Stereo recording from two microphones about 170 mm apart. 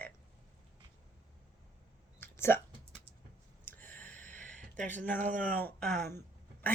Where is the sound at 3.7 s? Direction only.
10° left (ahead or behind).